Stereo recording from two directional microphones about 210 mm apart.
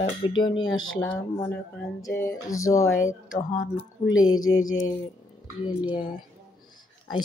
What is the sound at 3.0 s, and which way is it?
Speech, 40° left (ahead or behind).